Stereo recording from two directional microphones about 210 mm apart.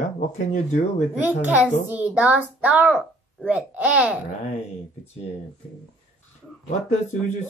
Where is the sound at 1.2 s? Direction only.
10° right (ahead or behind).